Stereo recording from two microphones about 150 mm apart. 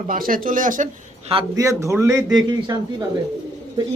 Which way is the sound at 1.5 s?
20° right (ahead or behind).